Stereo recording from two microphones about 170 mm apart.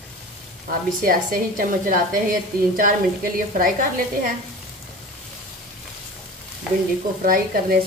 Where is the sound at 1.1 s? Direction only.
55° right (ahead or behind).